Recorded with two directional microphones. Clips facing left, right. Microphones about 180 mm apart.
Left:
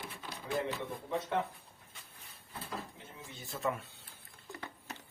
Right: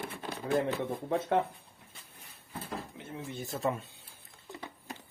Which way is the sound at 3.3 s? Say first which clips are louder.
Right 6 dB; 45° right (ahead or behind).